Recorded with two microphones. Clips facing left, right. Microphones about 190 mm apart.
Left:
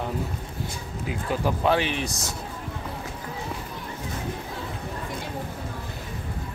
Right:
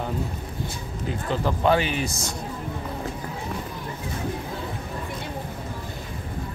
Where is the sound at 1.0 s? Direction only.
10° left (ahead or behind).